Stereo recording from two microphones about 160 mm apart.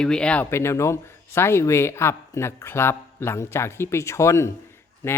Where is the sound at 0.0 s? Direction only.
5° left (ahead or behind).